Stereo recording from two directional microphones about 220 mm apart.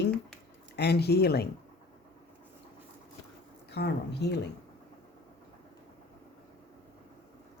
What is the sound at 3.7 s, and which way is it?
Speech, 50° left (ahead or behind).